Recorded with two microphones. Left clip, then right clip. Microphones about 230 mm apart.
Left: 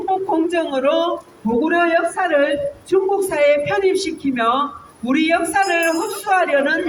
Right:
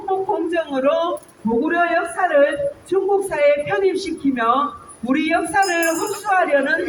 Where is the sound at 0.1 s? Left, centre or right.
Left.